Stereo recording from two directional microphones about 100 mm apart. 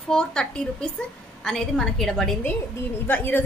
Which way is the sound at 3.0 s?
20° left (ahead or behind).